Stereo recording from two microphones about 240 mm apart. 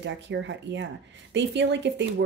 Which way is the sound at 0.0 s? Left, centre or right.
Right.